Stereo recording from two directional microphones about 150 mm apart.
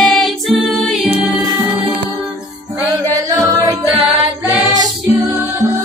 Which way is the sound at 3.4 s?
25° right (ahead or behind).